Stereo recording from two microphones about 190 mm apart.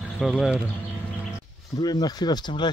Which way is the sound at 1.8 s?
20° left (ahead or behind).